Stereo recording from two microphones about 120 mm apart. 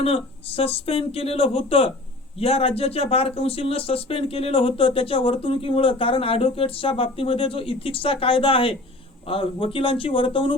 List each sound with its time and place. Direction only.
0.0 s speech: 55° left (ahead or behind)